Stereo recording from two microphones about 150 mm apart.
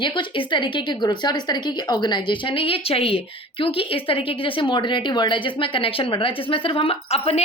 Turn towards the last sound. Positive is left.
turn(degrees=40)  # may be behind; listen again after turning